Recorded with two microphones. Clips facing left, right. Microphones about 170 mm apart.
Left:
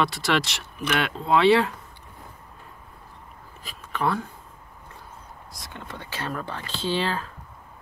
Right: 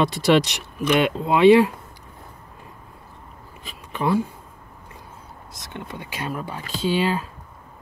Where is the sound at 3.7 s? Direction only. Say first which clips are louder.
Right 2 dB; 15° right (ahead or behind).